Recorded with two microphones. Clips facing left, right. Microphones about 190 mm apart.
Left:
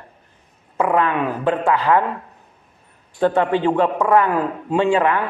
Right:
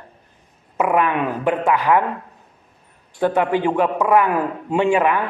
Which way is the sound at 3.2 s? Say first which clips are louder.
Left 1 dB; 15° right (ahead or behind).